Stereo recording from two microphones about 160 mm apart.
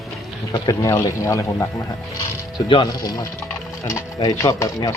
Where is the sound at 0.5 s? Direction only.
20° left (ahead or behind).